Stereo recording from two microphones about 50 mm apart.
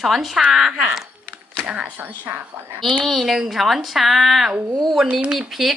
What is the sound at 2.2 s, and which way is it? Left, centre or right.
Speech, right.